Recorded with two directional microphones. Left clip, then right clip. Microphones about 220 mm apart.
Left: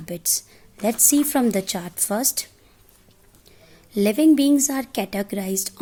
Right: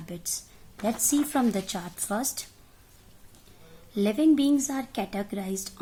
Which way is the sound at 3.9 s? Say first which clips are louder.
Left 6 dB; 40° left (ahead or behind).